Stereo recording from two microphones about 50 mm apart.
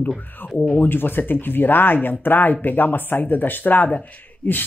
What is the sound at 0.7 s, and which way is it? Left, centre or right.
Speech, left.